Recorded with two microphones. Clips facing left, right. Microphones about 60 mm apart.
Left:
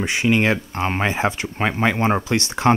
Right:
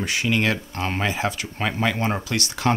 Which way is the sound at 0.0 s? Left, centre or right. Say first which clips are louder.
Left 4 dB; left.